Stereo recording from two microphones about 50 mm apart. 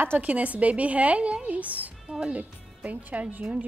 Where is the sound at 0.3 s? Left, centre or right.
Right.